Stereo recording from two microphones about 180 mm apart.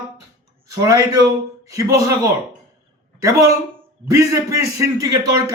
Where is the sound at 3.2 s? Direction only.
15° right (ahead or behind).